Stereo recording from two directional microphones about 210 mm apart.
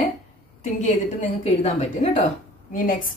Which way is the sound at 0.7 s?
35° left (ahead or behind).